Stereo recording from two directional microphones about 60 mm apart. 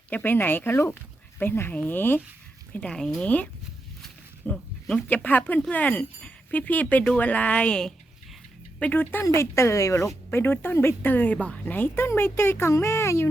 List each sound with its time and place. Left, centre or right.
0.1 s speech: left
4.5 s a sound: centre
5.0 s speech: left
8.8 s speech: left
9.3 s speech: left
10.3 s speech: left
11.7 s speech: left
12.0 s speech: left